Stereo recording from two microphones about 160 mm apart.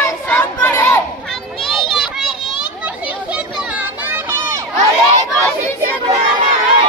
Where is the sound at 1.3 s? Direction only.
Centre (ahead or behind).